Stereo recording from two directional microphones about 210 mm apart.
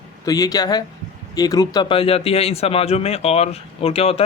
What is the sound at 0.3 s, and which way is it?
A man's voice, 15° left (ahead or behind).